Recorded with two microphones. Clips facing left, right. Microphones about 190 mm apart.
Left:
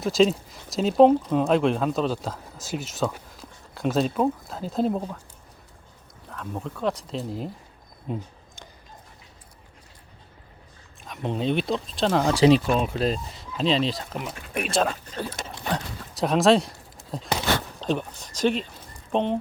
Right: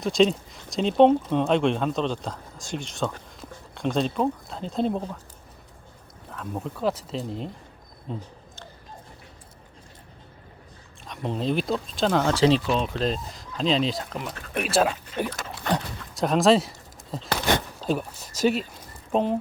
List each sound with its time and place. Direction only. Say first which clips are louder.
0.0 s speech: even; centre (ahead or behind)
6.3 s speech: right 1 dB; centre (ahead or behind)
8.1 s speech: left 3 dB; 15° left (ahead or behind)
11.0 s speech: left 1 dB; centre (ahead or behind)
12.2 s speech: left 5 dB; 15° left (ahead or behind); by 19.4 s 5° right (ahead or behind)